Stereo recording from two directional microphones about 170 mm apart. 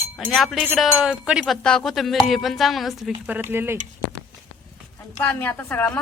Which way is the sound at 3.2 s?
10° right (ahead or behind).